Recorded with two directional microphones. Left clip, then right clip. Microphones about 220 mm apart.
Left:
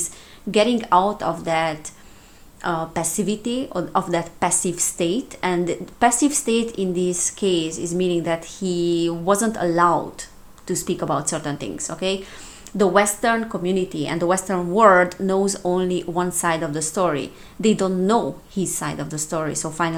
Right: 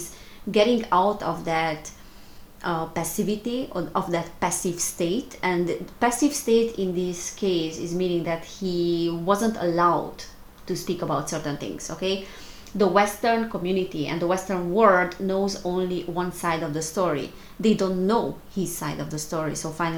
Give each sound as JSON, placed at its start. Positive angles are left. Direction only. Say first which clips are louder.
{"t": 0.5, "sound": "speech", "louder": "left 3 dB", "side_deg": 30}
{"t": 12.7, "sound": "speech", "louder": "left 3 dB", "side_deg": 40}